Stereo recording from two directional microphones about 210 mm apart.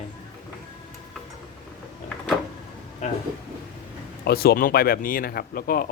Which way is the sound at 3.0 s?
35° left (ahead or behind).